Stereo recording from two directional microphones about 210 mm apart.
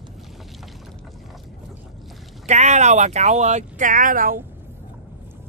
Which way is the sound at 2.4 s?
35° right (ahead or behind).